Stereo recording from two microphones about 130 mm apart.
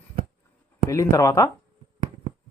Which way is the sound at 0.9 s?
25° left (ahead or behind).